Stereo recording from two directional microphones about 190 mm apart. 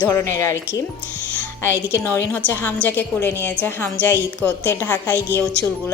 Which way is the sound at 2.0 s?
15° left (ahead or behind).